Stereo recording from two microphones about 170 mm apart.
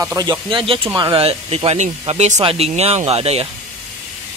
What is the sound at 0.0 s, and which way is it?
Speech, 20° right (ahead or behind).